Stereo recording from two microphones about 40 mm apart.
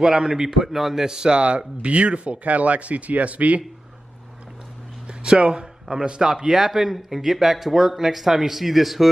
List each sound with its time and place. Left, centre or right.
0.0 s a man's voice: centre
1.0 s speech: centre; by 3.6 s right
5.0 s a man's voice: right; by 9.1 s centre